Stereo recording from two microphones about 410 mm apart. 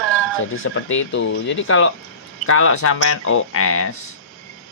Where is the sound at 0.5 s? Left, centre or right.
Left.